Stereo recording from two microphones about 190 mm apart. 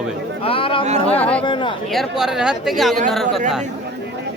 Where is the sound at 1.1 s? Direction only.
5° left (ahead or behind).